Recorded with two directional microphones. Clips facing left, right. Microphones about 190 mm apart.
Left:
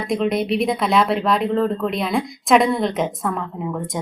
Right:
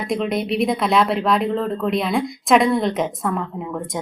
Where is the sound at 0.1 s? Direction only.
Centre (ahead or behind).